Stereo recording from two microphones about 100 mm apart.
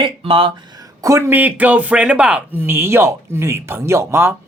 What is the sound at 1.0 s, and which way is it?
Speech, 30° right (ahead or behind).